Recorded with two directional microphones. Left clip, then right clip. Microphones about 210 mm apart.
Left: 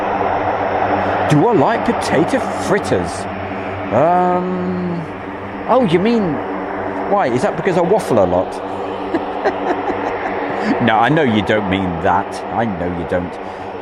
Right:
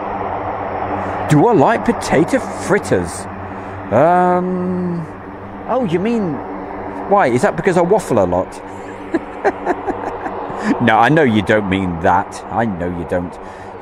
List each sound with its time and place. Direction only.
0.0 s a sound: 30° left (ahead or behind)
1.3 s speech: 20° right (ahead or behind)
5.6 s speech: 5° left (ahead or behind)
7.2 s speech: 15° right (ahead or behind)
9.1 s a sound: 15° right (ahead or behind)
10.8 s speech: 15° right (ahead or behind)